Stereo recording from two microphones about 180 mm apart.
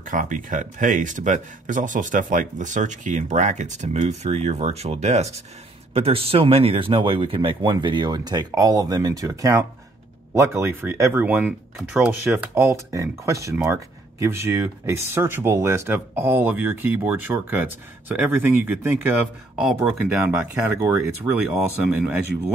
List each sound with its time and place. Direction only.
0.0 s speech: 45° right (ahead or behind); by 19.1 s 10° right (ahead or behind)
20.5 s speech: 10° right (ahead or behind)